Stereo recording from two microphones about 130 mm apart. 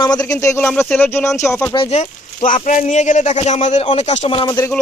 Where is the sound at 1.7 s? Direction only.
45° left (ahead or behind).